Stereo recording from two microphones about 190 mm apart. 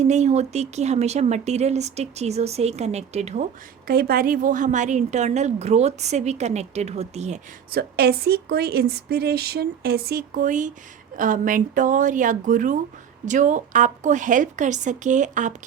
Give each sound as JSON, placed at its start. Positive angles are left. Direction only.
{"t": 0.0, "sound": "a woman's voice", "side_deg": -35}
{"t": 3.8, "sound": "a woman's voice", "side_deg": -50}
{"t": 7.7, "sound": "a woman's voice", "side_deg": -55}